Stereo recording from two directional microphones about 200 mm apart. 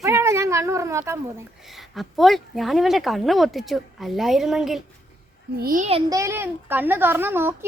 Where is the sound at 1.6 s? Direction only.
Centre (ahead or behind).